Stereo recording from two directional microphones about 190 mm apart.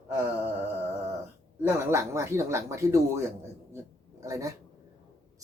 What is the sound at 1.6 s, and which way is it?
A woman's voice, 15° right (ahead or behind).